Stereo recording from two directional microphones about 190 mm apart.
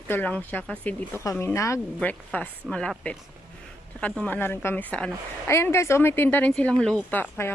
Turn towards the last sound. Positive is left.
turn(degrees=10)  # may be behind; listen again after turning